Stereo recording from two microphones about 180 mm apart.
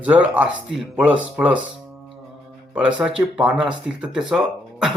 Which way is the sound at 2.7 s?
5° right (ahead or behind).